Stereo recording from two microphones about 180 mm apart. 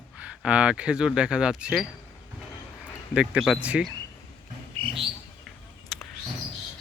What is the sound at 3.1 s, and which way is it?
Speech, 5° right (ahead or behind).